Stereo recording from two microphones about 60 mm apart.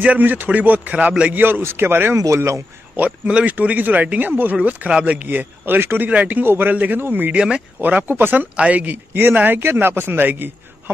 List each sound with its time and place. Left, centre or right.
0.0 s speech: right
1.3 s speech: right
2.1 s speech: right
3.0 s speech: right
4.6 s speech: centre; by 6.0 s right
6.0 s speech: right
7.3 s speech: centre
8.1 s speech: right
8.5 s speech: right